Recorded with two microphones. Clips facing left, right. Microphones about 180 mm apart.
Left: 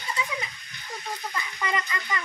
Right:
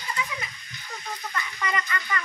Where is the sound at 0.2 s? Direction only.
30° left (ahead or behind).